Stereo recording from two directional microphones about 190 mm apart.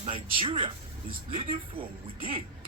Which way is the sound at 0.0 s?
25° right (ahead or behind).